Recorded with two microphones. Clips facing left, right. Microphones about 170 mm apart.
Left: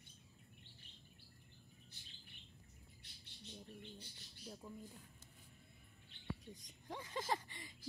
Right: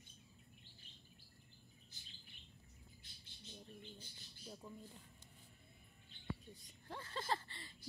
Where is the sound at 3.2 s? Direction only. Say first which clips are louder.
Left 2 dB; 65° left (ahead or behind).